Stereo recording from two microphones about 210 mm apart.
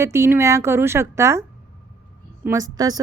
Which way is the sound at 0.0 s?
15° right (ahead or behind).